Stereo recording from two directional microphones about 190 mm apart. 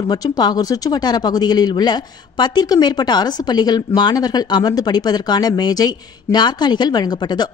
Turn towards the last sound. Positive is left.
turn(degrees=20)  # may be behind; listen again after turning